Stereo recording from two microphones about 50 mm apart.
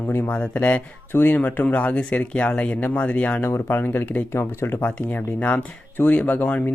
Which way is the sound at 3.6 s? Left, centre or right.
Left.